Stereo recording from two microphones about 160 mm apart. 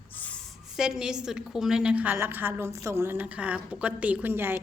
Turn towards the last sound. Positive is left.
turn(degrees=-15)  # may be behind; listen again after turning